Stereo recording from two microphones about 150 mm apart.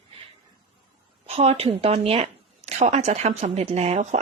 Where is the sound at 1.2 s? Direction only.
45° right (ahead or behind).